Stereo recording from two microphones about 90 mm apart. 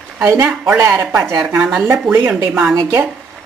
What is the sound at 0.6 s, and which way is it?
Speech, 35° right (ahead or behind).